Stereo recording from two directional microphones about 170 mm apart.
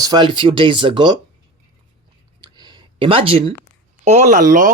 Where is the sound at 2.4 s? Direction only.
25° right (ahead or behind).